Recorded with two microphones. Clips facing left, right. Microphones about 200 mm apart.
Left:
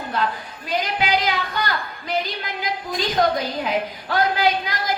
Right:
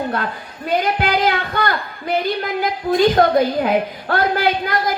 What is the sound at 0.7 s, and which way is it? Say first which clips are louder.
A woman's voice: right 4 dB; 55° right (ahead or behind).